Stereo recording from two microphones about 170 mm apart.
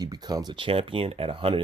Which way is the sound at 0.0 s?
25° right (ahead or behind).